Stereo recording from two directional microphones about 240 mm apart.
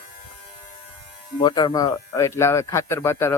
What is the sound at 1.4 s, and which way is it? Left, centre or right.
Speech, centre.